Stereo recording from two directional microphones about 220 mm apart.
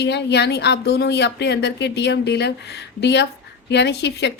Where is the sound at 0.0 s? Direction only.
50° left (ahead or behind).